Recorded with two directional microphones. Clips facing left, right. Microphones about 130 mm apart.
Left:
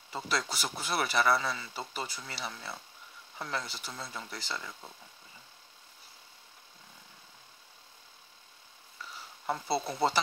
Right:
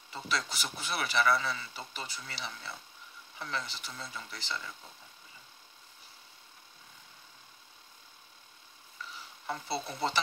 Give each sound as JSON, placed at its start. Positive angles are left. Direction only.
{"t": 0.1, "sound": "speech", "side_deg": 40}
{"t": 9.5, "sound": "speech", "side_deg": 35}